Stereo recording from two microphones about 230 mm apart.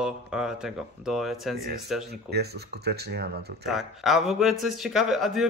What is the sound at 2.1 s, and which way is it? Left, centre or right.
Speech, right.